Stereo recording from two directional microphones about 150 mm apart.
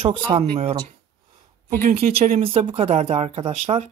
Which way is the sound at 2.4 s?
40° right (ahead or behind).